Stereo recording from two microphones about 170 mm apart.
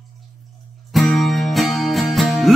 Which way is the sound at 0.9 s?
Centre (ahead or behind).